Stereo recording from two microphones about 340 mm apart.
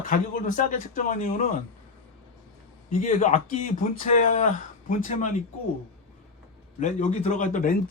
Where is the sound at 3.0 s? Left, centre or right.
Left.